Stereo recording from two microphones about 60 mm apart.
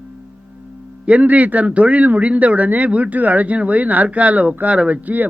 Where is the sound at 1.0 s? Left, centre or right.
Right.